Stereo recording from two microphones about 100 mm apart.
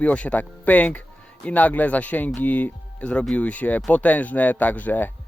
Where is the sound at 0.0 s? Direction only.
10° left (ahead or behind).